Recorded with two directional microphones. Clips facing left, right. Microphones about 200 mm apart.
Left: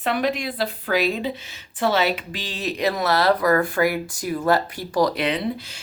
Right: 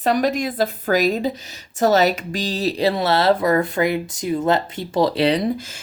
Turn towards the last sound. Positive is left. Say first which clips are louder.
# right 4 dB
turn(degrees=-35)  # may be behind; listen again after turning